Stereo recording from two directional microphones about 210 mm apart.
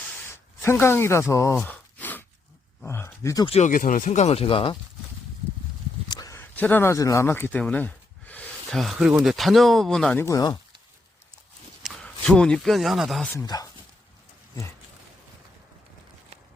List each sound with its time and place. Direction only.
0.0 s a sound: 5° left (ahead or behind)
1.5 s gasp: 5° left (ahead or behind)
2.8 s speech: 10° left (ahead or behind)
3.4 s speech: 30° left (ahead or behind)
3.7 s speech: 40° left (ahead or behind)
6.1 s speech: 15° left (ahead or behind)
11.8 s speech: centre (ahead or behind)
13.3 s speech: 15° left (ahead or behind)